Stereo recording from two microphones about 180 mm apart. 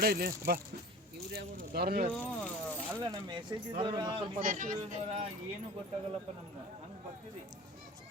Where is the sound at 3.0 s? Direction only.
25° right (ahead or behind).